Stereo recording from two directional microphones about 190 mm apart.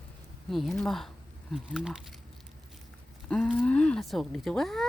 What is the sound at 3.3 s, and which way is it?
Speech, 5° left (ahead or behind).